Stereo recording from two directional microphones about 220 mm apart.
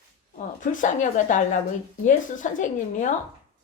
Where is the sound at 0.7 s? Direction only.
35° left (ahead or behind).